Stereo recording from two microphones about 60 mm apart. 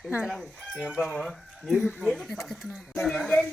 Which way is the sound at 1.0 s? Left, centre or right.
Centre.